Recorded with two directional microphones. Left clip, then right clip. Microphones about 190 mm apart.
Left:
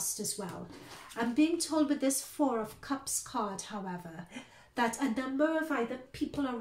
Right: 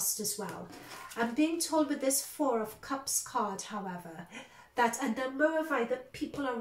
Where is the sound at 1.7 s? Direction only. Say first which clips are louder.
Right 1 dB; 35° left (ahead or behind).